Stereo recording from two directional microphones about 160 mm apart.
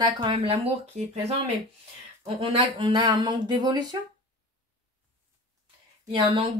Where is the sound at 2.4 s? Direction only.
30° right (ahead or behind).